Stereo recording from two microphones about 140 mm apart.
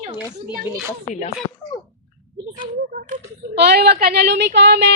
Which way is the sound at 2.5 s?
75° right (ahead or behind).